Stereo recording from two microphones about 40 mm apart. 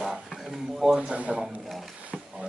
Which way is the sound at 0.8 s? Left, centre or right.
Centre.